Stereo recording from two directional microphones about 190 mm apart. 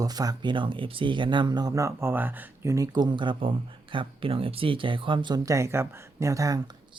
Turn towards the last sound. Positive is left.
turn(degrees=-20)  # may be behind; listen again after turning